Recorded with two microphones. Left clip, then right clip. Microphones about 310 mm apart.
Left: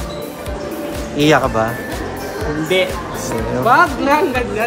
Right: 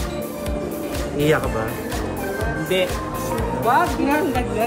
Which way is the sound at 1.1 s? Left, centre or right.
Centre.